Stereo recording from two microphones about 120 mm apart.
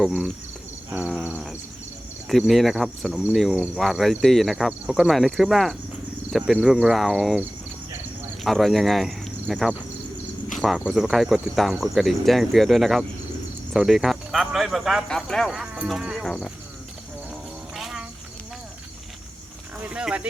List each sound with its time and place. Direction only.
0.9 s insect: 15° right (ahead or behind)
2.5 s speech: centre (ahead or behind)
8.4 s speech: centre (ahead or behind)
17.7 s insect: centre (ahead or behind)
19.8 s speech: 10° right (ahead or behind)